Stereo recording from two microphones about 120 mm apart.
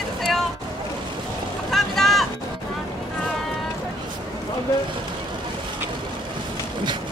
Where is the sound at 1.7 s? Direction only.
Centre (ahead or behind).